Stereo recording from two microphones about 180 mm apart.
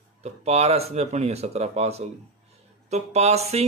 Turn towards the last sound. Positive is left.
turn(degrees=-35)  # may be behind; listen again after turning